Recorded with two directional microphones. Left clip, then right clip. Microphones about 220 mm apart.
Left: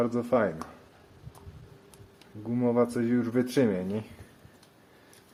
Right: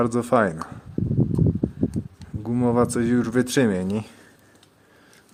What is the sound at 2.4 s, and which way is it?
Speech, 40° right (ahead or behind).